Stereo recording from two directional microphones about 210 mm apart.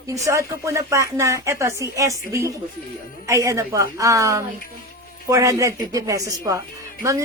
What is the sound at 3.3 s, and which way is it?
A woman's voice, 15° right (ahead or behind).